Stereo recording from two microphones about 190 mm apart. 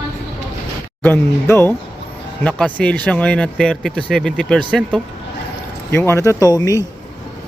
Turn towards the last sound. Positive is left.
turn(degrees=15)  # may be behind; listen again after turning